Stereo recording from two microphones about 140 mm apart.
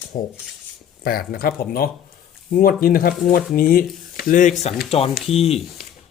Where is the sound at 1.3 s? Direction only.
90° left.